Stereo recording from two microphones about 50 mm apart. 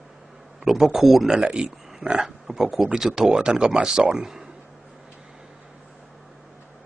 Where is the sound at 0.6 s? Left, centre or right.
Centre.